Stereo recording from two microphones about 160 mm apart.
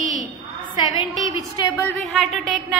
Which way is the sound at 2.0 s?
Centre (ahead or behind).